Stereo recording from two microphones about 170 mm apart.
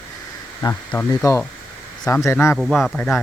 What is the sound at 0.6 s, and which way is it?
Speech, 25° left (ahead or behind).